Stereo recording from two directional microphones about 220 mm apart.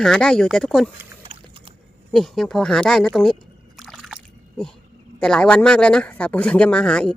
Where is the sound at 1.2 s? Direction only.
25° right (ahead or behind).